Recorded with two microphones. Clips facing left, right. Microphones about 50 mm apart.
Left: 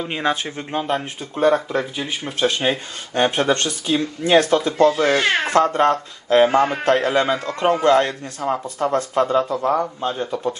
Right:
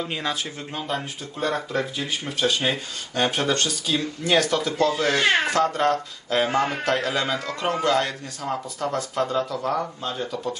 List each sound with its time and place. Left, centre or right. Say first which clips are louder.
0.0 s speech: left 5 dB; left
5.5 s speech: left 5 dB; left
8.6 s speech: left 6 dB; left